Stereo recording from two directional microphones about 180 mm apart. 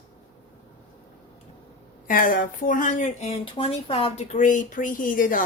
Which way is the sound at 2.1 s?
50° left (ahead or behind).